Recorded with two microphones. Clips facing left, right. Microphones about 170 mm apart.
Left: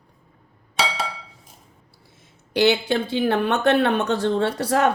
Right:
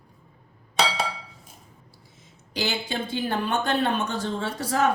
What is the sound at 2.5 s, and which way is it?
Speech, 65° left (ahead or behind).